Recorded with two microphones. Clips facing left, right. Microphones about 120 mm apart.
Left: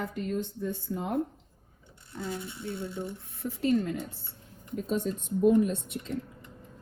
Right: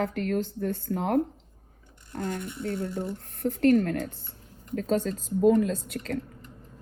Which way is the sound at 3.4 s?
65° right (ahead or behind).